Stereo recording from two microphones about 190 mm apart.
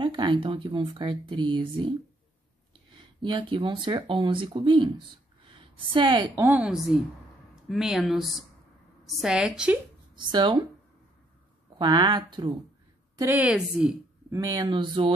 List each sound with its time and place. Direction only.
0.0 s a woman's voice: 25° right (ahead or behind)
6.4 s speech: 5° right (ahead or behind)
10.1 s speech: 25° right (ahead or behind)
11.8 s speech: 25° right (ahead or behind)
13.2 s a woman's voice: 10° right (ahead or behind)
14.3 s speech: 20° right (ahead or behind)